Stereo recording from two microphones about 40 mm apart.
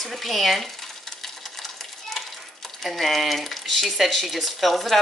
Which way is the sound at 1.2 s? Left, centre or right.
Centre.